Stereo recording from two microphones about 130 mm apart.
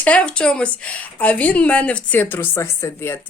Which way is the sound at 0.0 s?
10° left (ahead or behind).